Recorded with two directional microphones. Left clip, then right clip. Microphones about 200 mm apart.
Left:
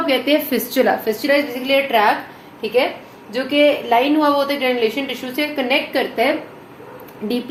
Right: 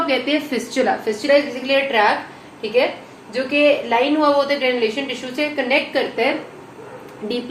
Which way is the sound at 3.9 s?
45° left (ahead or behind).